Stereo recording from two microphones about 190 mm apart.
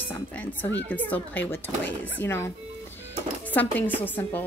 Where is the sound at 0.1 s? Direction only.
10° left (ahead or behind).